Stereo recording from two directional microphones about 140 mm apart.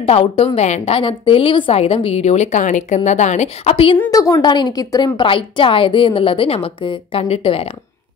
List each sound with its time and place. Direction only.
0.0 s a woman's voice: 45° left (ahead or behind)
4.1 s a woman's voice: 25° left (ahead or behind); by 7.7 s 40° left (ahead or behind)